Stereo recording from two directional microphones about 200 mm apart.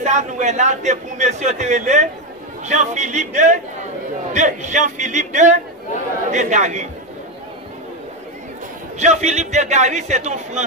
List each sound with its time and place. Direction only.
0.0 s a man's voice: 35° right (ahead or behind)
8.9 s a man's voice: 35° right (ahead or behind)